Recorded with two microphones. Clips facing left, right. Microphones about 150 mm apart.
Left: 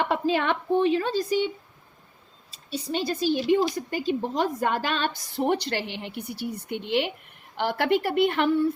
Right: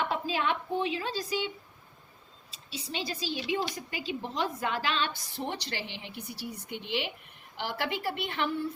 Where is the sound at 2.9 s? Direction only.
55° left (ahead or behind).